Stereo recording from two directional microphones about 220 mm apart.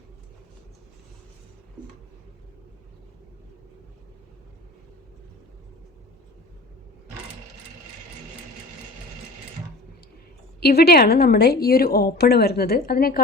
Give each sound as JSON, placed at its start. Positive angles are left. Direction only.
{"t": 10.6, "sound": "a woman's voice", "side_deg": 45}